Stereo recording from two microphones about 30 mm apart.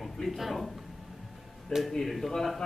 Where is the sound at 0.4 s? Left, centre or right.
Centre.